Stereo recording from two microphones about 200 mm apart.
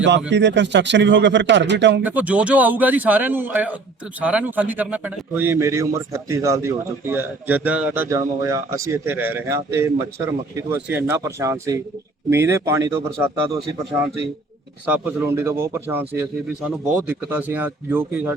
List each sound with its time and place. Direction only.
0.3 s speech: 60° right (ahead or behind)
2.0 s a man's voice: 10° right (ahead or behind)